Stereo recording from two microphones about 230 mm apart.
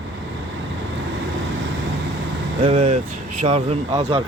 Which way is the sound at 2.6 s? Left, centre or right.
Right.